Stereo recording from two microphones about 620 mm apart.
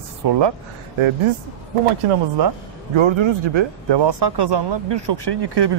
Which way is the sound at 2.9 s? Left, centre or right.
Right.